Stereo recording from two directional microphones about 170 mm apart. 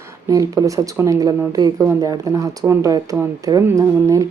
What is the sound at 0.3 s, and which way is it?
A woman's voice, 20° right (ahead or behind).